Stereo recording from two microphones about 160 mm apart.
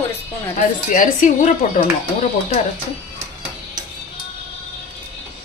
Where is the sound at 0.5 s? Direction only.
55° left (ahead or behind).